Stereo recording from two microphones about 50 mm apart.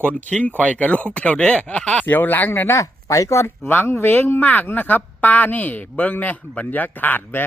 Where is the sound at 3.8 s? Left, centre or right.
Left.